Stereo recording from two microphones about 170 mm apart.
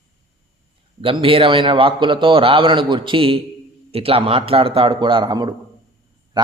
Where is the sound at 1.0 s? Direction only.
30° right (ahead or behind).